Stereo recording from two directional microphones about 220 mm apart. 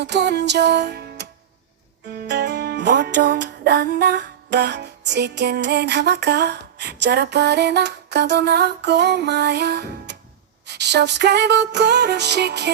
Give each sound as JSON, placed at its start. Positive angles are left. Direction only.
{"t": 0.0, "sound": "music", "side_deg": -50}